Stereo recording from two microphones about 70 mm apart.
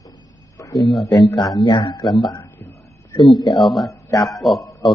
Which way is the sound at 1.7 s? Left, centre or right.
Left.